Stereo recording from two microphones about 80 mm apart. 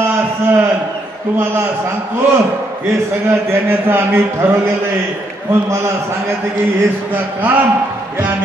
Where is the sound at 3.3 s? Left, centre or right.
Right.